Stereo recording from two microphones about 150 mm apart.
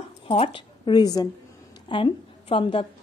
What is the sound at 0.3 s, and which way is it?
A woman's voice, 35° left (ahead or behind).